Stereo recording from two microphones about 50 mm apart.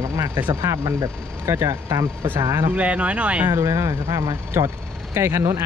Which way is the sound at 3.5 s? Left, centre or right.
Right.